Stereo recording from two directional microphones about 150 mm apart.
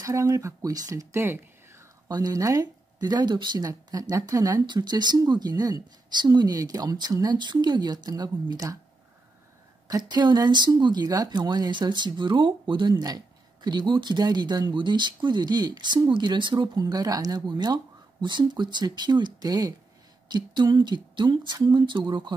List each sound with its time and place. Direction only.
0.0 s speech: 20° right (ahead or behind)
9.8 s speech: 25° right (ahead or behind)